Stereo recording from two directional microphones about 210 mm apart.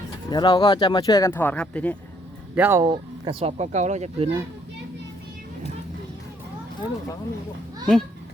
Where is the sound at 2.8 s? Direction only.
25° right (ahead or behind).